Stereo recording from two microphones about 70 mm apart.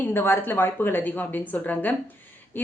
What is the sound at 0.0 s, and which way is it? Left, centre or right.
A woman's voice, left.